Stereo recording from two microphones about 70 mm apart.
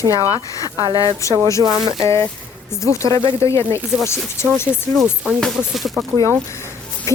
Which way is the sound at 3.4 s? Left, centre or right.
Left.